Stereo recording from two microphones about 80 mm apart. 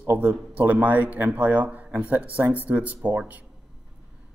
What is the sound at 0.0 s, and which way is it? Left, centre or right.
Speech, right.